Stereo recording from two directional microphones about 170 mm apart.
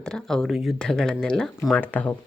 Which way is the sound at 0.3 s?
5° left (ahead or behind).